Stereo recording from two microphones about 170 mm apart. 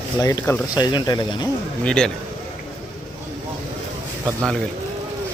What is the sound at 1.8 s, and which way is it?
Speech, 5° left (ahead or behind).